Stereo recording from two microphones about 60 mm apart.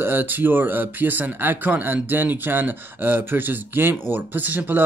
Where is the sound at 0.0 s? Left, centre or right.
Right.